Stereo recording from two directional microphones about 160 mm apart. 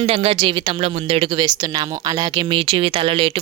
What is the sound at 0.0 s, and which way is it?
Speech, 40° right (ahead or behind).